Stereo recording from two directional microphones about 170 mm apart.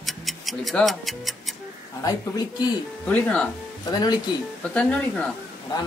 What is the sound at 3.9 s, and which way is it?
Speech, 25° left (ahead or behind).